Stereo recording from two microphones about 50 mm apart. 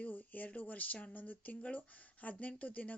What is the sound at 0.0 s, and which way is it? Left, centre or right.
Speech, left.